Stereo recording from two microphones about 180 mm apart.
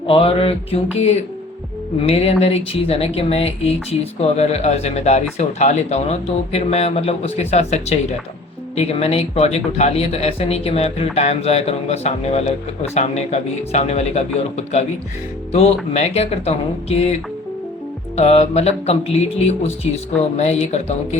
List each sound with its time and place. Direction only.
0.1 s speech: 30° left (ahead or behind)
18.2 s speech: 35° left (ahead or behind)